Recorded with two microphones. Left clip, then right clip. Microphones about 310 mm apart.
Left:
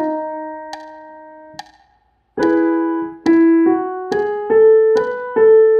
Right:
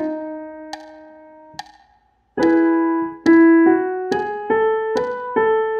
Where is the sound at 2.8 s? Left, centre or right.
Right.